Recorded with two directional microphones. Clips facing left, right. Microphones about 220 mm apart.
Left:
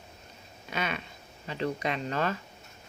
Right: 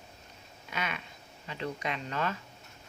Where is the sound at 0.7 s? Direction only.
30° left (ahead or behind).